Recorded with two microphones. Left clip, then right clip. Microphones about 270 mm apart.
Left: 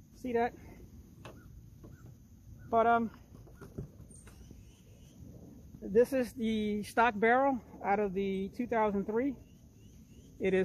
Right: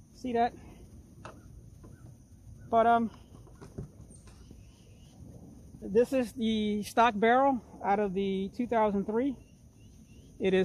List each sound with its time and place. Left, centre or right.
0.2 s speech: right
2.7 s speech: right
5.8 s speech: right